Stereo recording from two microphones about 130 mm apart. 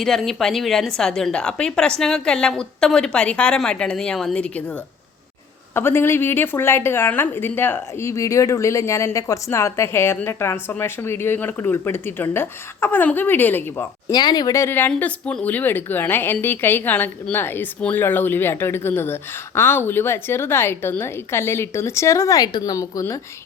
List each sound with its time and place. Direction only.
0.0 s a woman's voice: 5° left (ahead or behind)
5.7 s a woman's voice: 20° left (ahead or behind)
14.1 s a woman's voice: 35° left (ahead or behind)